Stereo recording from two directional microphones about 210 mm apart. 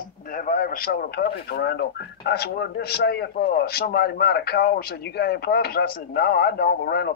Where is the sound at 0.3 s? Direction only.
40° left (ahead or behind).